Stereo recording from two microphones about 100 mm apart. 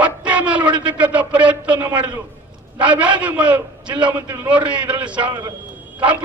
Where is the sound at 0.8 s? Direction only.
15° right (ahead or behind).